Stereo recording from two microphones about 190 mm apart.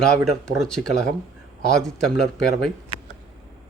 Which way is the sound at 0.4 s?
5° left (ahead or behind).